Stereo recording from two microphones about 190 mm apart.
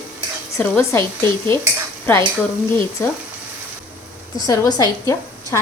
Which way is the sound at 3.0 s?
15° left (ahead or behind).